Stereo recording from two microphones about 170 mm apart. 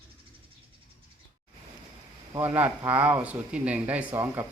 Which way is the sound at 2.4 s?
10° right (ahead or behind).